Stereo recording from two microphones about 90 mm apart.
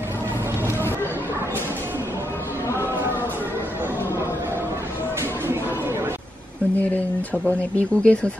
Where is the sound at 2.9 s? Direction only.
25° right (ahead or behind).